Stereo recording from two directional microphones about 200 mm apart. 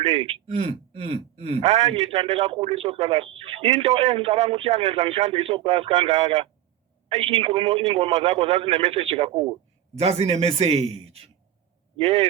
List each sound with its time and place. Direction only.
0.0 s a man's voice: 30° right (ahead or behind)